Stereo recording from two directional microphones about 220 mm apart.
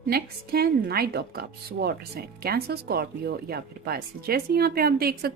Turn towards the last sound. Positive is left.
turn(degrees=-45)  # may be behind; listen again after turning